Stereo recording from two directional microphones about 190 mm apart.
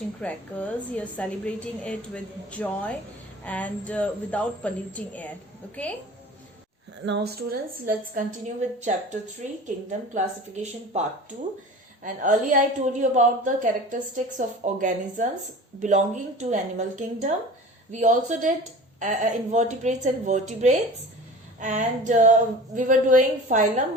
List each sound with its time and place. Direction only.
0.2 s a woman's voice: 5° left (ahead or behind)
7.0 s speech: 70° right (ahead or behind)
7.9 s a woman's voice: 45° right (ahead or behind)
10.2 s a woman's voice: 40° right (ahead or behind)
12.0 s a woman's voice: 45° right (ahead or behind)